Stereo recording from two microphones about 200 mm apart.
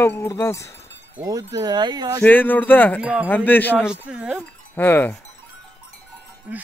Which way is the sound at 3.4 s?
10° left (ahead or behind).